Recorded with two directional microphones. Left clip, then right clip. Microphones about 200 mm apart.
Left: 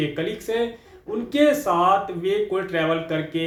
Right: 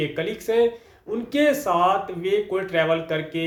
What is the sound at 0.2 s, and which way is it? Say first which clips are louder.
Speech: right 8 dB; 25° right (ahead or behind).